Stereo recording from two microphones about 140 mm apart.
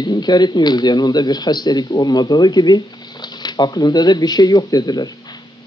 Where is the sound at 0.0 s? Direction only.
30° left (ahead or behind).